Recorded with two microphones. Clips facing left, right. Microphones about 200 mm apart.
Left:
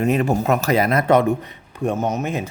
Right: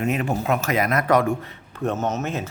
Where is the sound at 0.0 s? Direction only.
35° left (ahead or behind).